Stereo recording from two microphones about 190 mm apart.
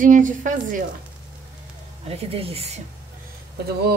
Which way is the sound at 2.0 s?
30° right (ahead or behind).